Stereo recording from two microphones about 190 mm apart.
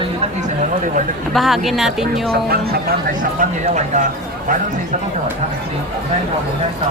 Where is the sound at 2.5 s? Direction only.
55° right (ahead or behind).